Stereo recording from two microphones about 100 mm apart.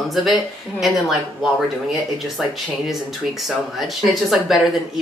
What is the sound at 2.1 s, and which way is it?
A woman's voice, centre (ahead or behind).